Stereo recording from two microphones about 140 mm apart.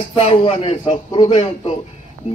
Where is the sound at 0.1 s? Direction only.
40° left (ahead or behind).